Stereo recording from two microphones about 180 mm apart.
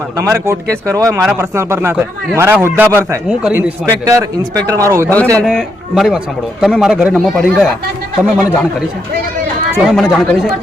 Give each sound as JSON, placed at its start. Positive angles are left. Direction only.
{"t": 0.2, "sound": "a man's voice", "side_deg": -15}
{"t": 4.0, "sound": "a man's voice", "side_deg": -20}
{"t": 5.4, "sound": "speech", "side_deg": 0}
{"t": 9.9, "sound": "speech", "side_deg": 0}